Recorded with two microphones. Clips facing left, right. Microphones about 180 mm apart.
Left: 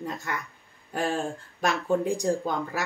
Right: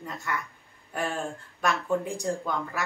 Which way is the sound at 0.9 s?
30° left (ahead or behind).